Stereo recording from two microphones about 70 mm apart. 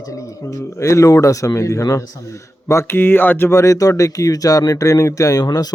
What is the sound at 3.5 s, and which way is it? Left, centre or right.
Speech, left.